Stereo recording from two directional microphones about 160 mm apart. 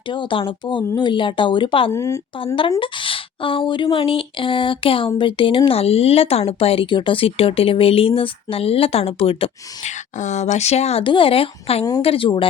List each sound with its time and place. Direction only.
0.1 s speech: 30° left (ahead or behind)
1.9 s speech: 20° left (ahead or behind)
2.6 s speech: 35° left (ahead or behind)
10.2 s speech: 45° left (ahead or behind)